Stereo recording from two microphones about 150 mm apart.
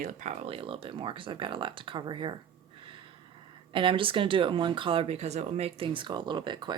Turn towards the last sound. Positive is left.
turn(degrees=-30)  # may be behind; listen again after turning